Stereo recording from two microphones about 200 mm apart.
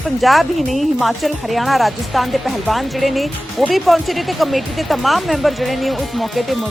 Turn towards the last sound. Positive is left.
turn(degrees=0)  # may be behind; listen again after turning